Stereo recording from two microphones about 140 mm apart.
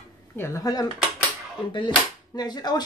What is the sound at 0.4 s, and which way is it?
Speech, 25° left (ahead or behind).